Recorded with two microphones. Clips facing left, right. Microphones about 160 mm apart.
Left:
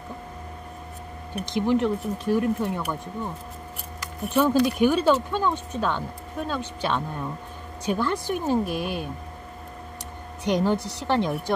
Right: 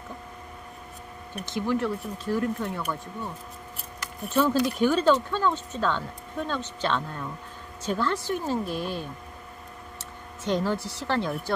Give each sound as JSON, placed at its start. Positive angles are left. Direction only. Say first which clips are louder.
{"t": 1.3, "sound": "speech", "louder": "left 4 dB", "side_deg": 15}
{"t": 4.3, "sound": "speech", "louder": "left 3 dB", "side_deg": 15}